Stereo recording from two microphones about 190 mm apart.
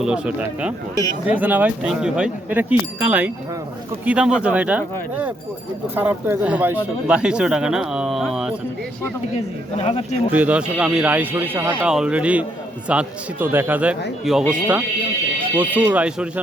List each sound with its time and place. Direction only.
0.0 s speech: 5° right (ahead or behind)
9.7 s speech: 30° left (ahead or behind)
10.3 s speech: 5° right (ahead or behind)